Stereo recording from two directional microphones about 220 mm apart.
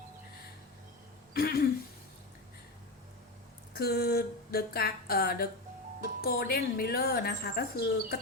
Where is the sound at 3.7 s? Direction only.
45° left (ahead or behind).